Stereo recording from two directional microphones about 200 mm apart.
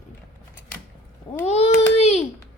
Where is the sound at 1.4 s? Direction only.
30° left (ahead or behind).